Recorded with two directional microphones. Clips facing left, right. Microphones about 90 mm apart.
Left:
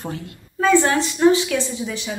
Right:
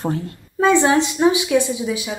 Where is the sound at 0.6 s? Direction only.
20° right (ahead or behind).